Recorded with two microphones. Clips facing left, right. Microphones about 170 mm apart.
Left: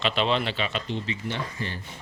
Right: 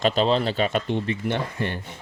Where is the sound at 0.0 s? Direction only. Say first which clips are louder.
Right 4 dB; 40° right (ahead or behind); by 1.8 s 60° right (ahead or behind).